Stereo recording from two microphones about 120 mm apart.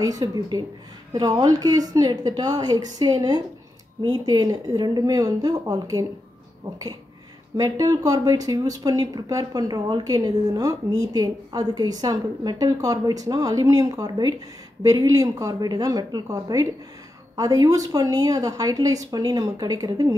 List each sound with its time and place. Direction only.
0.0 s speech: 30° right (ahead or behind)
7.5 s speech: 30° right (ahead or behind)